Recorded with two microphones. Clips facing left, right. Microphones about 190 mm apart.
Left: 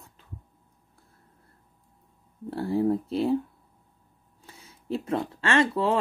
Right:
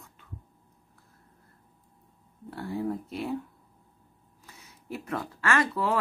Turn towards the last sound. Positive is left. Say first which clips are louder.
# left 4 dB
turn(degrees=25)  # may be behind; listen again after turning